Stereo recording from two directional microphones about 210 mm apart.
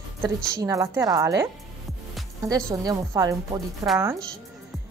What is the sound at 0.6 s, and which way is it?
Speech, 15° right (ahead or behind).